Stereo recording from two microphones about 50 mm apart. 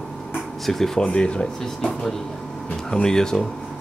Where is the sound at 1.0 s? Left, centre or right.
Centre.